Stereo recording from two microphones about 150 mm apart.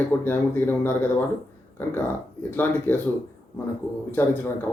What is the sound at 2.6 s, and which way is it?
Speech, 15° left (ahead or behind).